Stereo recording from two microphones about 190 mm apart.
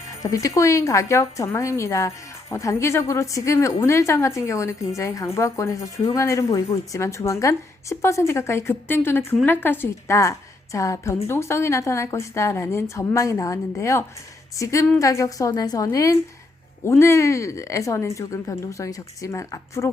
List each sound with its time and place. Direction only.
0.2 s a woman's voice: 15° left (ahead or behind)